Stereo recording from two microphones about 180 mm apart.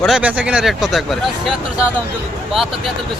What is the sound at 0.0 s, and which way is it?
Speech, 5° right (ahead or behind).